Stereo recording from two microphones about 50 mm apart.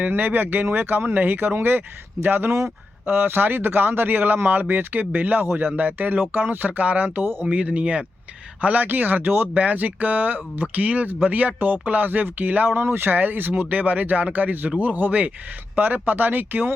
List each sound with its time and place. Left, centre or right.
0.0 s speech: right
7.5 s speech: right